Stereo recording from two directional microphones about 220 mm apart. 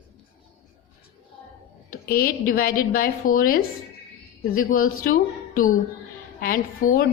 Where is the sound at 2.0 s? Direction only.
40° left (ahead or behind).